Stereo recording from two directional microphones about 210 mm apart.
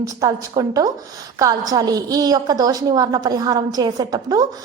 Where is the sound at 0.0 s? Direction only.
15° right (ahead or behind).